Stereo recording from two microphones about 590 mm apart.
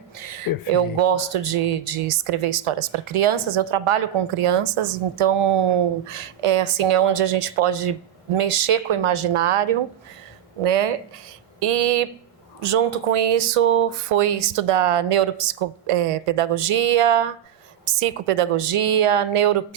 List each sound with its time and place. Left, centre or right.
0.2 s speech: right
10.6 s speech: right